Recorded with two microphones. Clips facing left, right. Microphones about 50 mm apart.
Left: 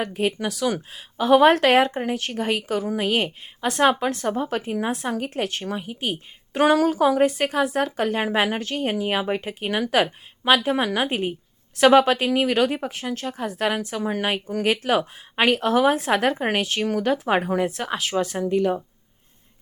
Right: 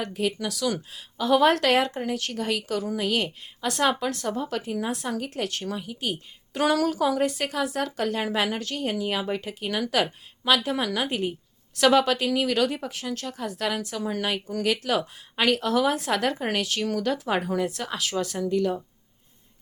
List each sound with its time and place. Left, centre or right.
0.0 s a woman's voice: left